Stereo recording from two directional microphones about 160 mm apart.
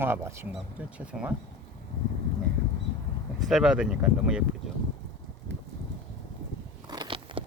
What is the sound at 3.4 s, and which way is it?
Speech, 5° right (ahead or behind).